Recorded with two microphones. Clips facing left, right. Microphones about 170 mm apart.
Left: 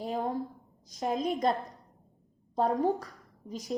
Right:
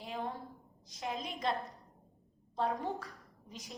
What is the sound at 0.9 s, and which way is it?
Speech, 40° left (ahead or behind).